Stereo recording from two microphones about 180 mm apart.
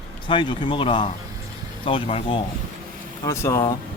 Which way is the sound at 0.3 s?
25° left (ahead or behind).